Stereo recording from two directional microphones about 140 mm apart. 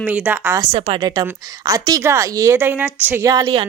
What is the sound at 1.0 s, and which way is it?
Speech, 30° right (ahead or behind).